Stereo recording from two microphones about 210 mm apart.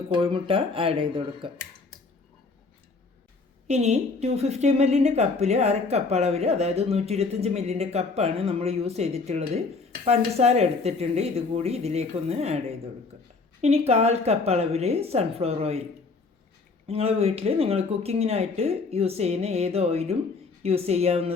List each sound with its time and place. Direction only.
0.2 s speech: 25° right (ahead or behind)
3.7 s a woman's voice: 30° right (ahead or behind)
13.6 s speech: 30° right (ahead or behind)
16.8 s speech: 30° right (ahead or behind)